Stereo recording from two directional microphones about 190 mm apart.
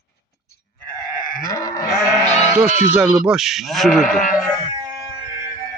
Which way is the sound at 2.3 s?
35° left (ahead or behind).